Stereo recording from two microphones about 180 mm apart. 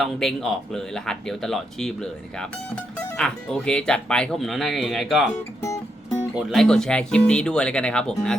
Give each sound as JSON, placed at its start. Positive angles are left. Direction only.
{"t": 0.0, "sound": "speech", "side_deg": 0}
{"t": 5.6, "sound": "music", "side_deg": 15}
{"t": 6.3, "sound": "speech", "side_deg": 0}